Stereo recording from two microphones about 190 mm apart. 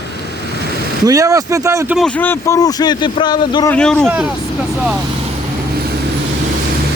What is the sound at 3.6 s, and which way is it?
Speech, 5° left (ahead or behind).